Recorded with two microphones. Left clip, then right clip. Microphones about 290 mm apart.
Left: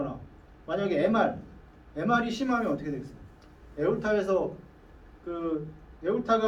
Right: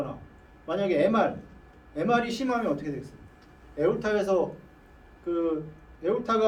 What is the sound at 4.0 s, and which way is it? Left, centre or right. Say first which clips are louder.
Speech: right 1 dB; right.